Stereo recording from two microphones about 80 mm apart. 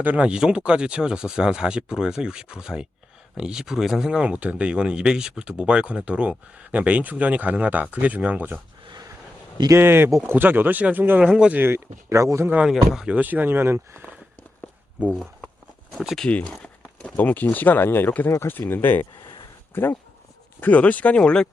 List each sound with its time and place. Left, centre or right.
0.0 s speech: centre
9.7 s speech: right
11.2 s speech: centre
11.6 s speech: right
12.6 s speech: centre
13.1 s speech: right
16.0 s speech: centre
17.2 s speech: left
19.2 s a sound: left
19.7 s speech: left; by 21.4 s centre